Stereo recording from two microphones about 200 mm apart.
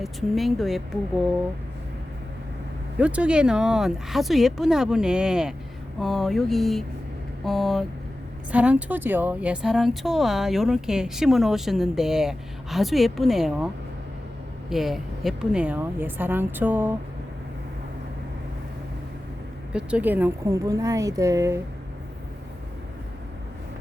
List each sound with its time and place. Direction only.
0.0 s speech: centre (ahead or behind)
3.0 s speech: 5° right (ahead or behind)
14.7 s a woman's voice: centre (ahead or behind)
19.7 s a woman's voice: 5° right (ahead or behind)